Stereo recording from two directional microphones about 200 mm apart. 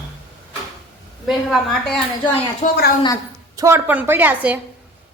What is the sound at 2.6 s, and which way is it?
Speech, 40° left (ahead or behind).